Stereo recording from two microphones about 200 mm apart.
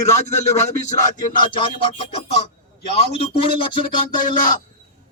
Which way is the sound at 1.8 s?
30° left (ahead or behind).